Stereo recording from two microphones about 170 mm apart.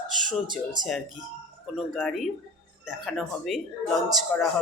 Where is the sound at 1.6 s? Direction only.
Centre (ahead or behind).